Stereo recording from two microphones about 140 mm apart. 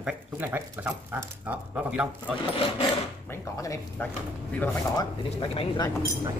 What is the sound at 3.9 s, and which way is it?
Speech, 10° left (ahead or behind).